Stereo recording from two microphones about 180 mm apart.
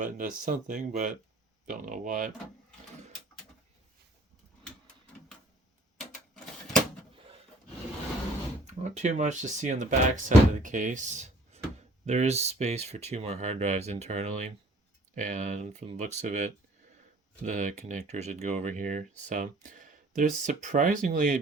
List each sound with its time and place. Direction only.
0.0 s speech: 50° right (ahead or behind)
6.0 s sewing machine: 5° left (ahead or behind)
8.6 s speech: 40° right (ahead or behind)